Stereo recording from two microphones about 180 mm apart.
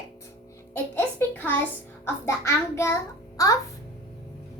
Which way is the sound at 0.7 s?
10° left (ahead or behind).